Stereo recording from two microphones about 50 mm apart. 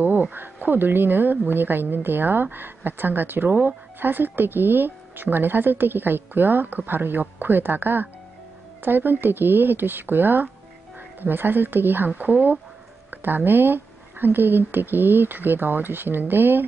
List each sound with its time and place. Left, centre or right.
0.0 s speech: right